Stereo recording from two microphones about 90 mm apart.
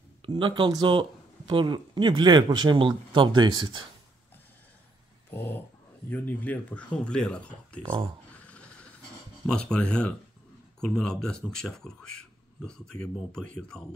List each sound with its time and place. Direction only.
0.2 s speech: 65° right (ahead or behind)
5.3 s dog: 25° left (ahead or behind)
6.0 s speech: 20° left (ahead or behind)
8.5 s train: 15° left (ahead or behind)
9.5 s speech: 10° left (ahead or behind)